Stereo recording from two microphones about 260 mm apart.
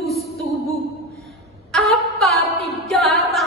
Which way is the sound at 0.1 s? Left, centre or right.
Centre.